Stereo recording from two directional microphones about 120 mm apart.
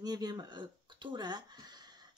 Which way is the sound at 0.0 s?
35° right (ahead or behind).